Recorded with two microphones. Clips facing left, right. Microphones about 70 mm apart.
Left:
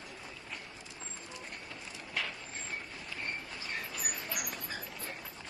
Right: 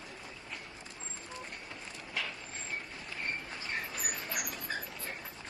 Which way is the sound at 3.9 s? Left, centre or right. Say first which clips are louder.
Right 1 dB; right.